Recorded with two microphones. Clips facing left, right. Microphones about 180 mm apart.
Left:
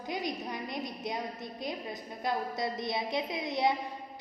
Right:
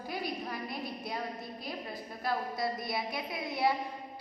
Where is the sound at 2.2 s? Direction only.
20° left (ahead or behind).